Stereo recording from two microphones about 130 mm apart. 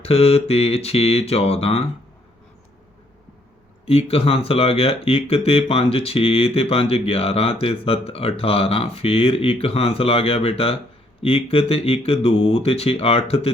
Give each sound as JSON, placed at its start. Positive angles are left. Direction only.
{"t": 0.0, "sound": "speech", "side_deg": 50}
{"t": 3.8, "sound": "speech", "side_deg": 50}